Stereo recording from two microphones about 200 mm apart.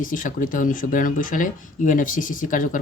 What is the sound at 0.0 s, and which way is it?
Speech, 40° left (ahead or behind).